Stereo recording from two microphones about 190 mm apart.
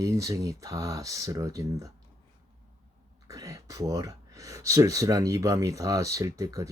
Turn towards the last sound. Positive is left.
turn(degrees=-20)  # may be behind; listen again after turning